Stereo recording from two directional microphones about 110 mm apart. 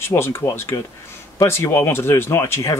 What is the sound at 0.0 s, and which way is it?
Speech, 20° left (ahead or behind).